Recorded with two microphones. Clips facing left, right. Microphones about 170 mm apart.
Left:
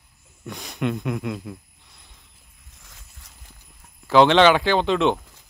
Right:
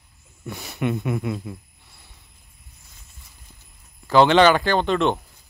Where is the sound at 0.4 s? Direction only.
5° right (ahead or behind).